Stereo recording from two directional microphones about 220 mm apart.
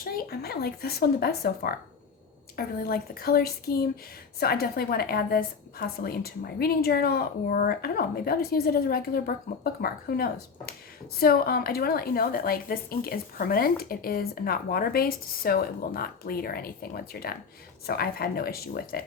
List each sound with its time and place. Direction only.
0.0 s a woman's voice: 45° left (ahead or behind)